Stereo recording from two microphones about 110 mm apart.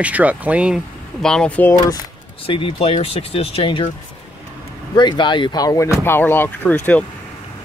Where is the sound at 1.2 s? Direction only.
10° left (ahead or behind).